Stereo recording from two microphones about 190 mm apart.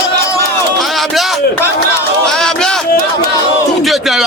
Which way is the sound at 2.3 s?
5° left (ahead or behind).